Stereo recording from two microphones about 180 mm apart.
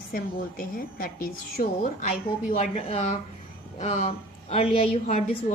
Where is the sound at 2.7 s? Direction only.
35° left (ahead or behind).